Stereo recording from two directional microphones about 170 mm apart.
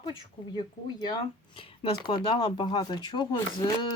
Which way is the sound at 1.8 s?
30° left (ahead or behind).